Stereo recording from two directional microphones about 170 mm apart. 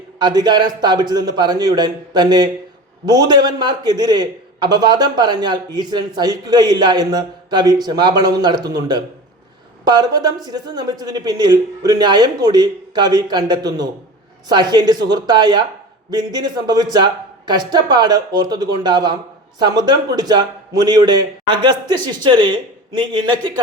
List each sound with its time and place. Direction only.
0.2 s a man's voice: 25° right (ahead or behind)